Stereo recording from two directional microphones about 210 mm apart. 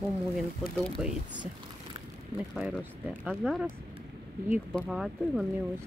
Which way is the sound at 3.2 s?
Centre (ahead or behind).